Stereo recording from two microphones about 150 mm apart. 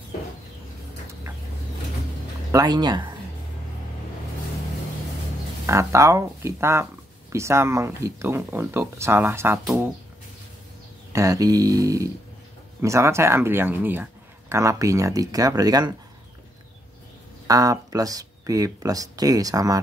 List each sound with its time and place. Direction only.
2.5 s speech: 25° right (ahead or behind)
5.7 s speech: 20° right (ahead or behind)
11.1 s speech: 20° right (ahead or behind)
17.5 s speech: 25° right (ahead or behind)